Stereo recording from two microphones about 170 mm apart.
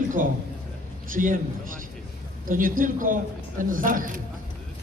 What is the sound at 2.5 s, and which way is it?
A man's voice, 55° right (ahead or behind).